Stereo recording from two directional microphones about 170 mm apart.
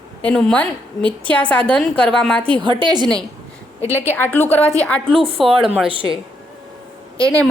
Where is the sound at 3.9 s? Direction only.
15° left (ahead or behind).